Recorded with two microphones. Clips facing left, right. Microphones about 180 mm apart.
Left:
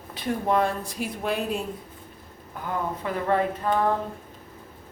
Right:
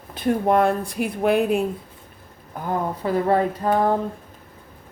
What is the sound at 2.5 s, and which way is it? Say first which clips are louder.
Speech: right 4 dB; 40° right (ahead or behind).